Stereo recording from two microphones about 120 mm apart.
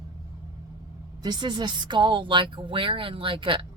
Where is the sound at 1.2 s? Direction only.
35° right (ahead or behind).